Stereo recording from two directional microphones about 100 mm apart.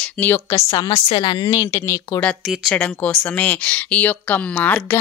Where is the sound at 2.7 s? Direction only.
10° left (ahead or behind).